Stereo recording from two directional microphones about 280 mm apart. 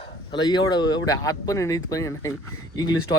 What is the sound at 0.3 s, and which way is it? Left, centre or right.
Speech, centre.